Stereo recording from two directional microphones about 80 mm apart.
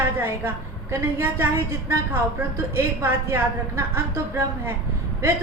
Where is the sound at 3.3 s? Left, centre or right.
Right.